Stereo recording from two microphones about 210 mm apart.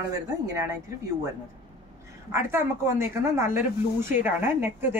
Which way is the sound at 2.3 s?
10° right (ahead or behind).